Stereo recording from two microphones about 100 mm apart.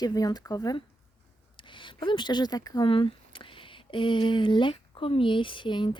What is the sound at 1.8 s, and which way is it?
Speech, 55° left (ahead or behind).